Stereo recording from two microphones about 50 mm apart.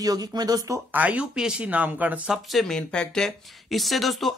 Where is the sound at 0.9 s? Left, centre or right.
Right.